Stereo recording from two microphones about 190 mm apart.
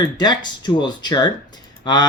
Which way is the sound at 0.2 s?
20° left (ahead or behind).